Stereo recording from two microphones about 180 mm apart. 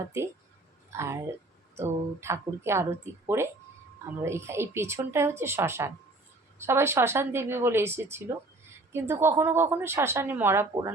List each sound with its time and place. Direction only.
0.1 s a woman's voice: 15° right (ahead or behind)